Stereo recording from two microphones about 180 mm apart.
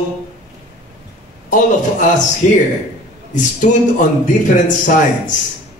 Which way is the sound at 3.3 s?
45° left (ahead or behind).